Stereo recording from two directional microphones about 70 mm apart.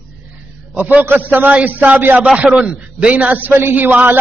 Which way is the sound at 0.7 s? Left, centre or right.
Right.